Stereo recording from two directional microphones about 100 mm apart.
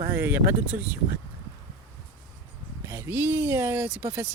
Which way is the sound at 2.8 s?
25° right (ahead or behind).